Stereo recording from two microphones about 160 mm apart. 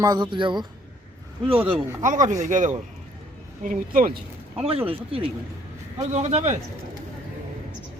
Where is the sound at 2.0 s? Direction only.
50° right (ahead or behind).